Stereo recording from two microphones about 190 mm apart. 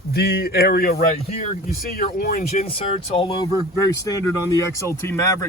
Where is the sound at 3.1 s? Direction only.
30° left (ahead or behind).